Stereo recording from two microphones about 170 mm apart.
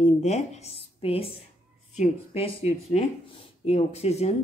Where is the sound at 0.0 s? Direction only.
40° left (ahead or behind).